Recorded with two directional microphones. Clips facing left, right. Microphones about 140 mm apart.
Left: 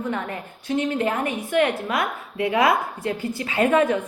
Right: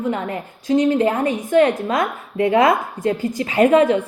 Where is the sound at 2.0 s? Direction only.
40° right (ahead or behind).